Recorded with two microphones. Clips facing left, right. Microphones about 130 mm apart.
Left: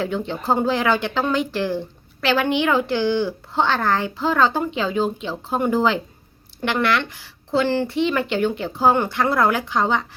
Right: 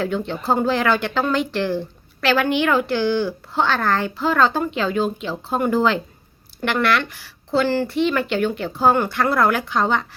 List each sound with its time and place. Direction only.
0.0 s a woman's voice: 15° left (ahead or behind)